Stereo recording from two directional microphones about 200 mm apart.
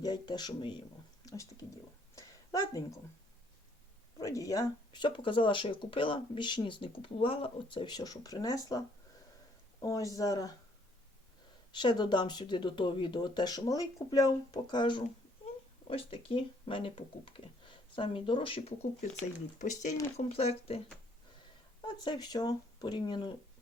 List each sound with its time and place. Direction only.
0.0 s speech: 20° left (ahead or behind)
1.2 s a sound: 15° left (ahead or behind)
4.2 s speech: 15° left (ahead or behind)
9.8 s speech: 15° left (ahead or behind)
11.7 s speech: 25° left (ahead or behind)